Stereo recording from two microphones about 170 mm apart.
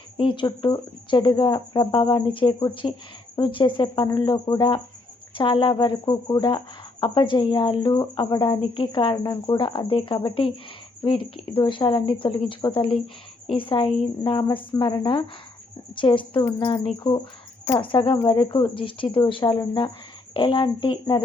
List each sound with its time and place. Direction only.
0.2 s speech: 30° left (ahead or behind)